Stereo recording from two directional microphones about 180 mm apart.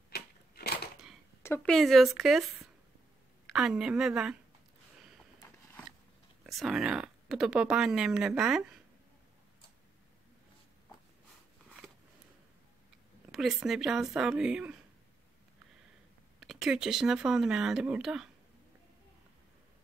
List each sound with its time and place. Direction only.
0.1 s typewriter: 60° left (ahead or behind)
1.4 s a sound: 15° left (ahead or behind)
1.7 s speech: centre (ahead or behind)
6.4 s speech: centre (ahead or behind)
13.3 s speech: centre (ahead or behind)
16.3 s speech: centre (ahead or behind)